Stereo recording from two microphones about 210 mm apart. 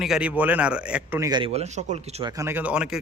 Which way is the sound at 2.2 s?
15° right (ahead or behind).